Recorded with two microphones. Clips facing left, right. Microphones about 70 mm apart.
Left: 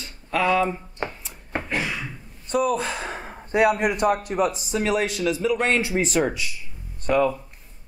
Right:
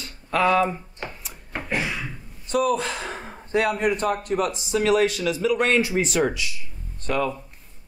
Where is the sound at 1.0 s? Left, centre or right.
Left.